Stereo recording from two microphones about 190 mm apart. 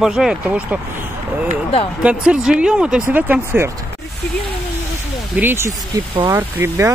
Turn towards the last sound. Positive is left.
turn(degrees=-10)  # may be behind; listen again after turning